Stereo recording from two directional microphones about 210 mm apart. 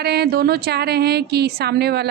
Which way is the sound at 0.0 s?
50° right (ahead or behind).